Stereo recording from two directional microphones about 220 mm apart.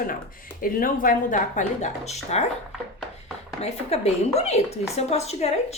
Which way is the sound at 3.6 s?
30° left (ahead or behind).